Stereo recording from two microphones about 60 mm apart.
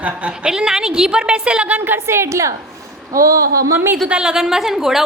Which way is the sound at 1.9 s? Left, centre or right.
Right.